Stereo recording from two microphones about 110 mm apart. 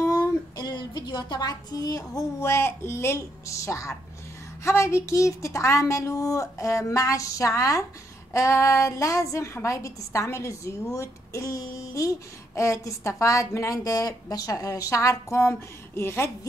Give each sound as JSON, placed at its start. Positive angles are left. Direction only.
{"t": 0.0, "sound": "a woman's voice", "side_deg": 35}